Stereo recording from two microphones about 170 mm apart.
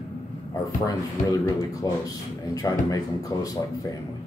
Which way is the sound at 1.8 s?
20° left (ahead or behind).